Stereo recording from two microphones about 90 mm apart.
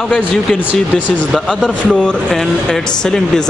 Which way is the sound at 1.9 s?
10° left (ahead or behind).